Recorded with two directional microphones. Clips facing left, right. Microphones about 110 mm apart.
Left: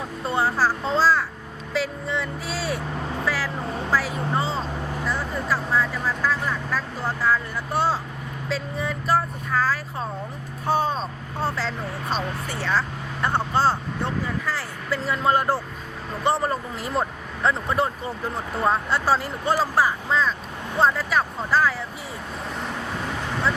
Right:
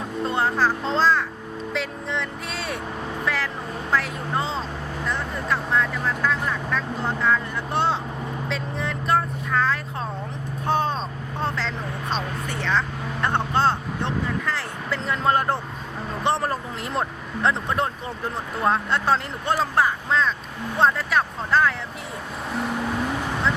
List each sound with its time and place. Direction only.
0.3 s a sound: 5° left (ahead or behind)
1.7 s music: 5° left (ahead or behind)
3.2 s vehicle: 5° left (ahead or behind)
13.2 s vehicle: 5° left (ahead or behind)
16.2 s speech: centre (ahead or behind)